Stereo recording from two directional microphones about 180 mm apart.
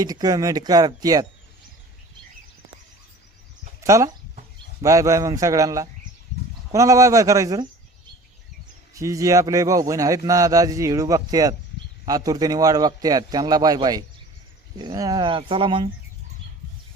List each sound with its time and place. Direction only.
0.0 s a man's voice: 20° right (ahead or behind)
3.8 s a man's voice: 15° right (ahead or behind)
9.0 s a man's voice: 20° right (ahead or behind)